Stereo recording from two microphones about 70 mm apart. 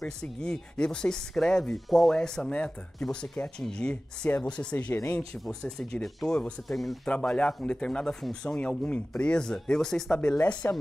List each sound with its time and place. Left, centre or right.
0.0 s speech: centre
7.1 s speech: centre
10.6 s speech: left